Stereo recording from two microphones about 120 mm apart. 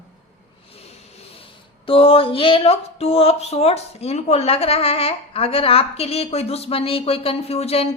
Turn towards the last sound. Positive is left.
turn(degrees=60)  # may be behind; listen again after turning